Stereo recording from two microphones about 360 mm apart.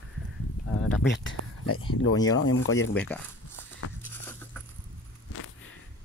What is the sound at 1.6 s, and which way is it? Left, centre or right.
Speech, left.